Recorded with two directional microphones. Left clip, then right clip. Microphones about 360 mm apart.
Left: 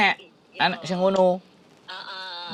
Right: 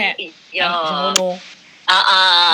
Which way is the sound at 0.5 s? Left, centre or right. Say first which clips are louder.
Right 4 dB; right.